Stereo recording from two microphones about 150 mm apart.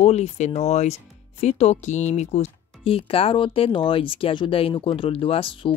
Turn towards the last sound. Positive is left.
turn(degrees=40)  # may be behind; listen again after turning